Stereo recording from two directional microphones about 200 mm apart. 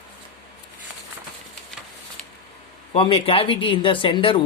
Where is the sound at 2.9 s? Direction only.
25° left (ahead or behind).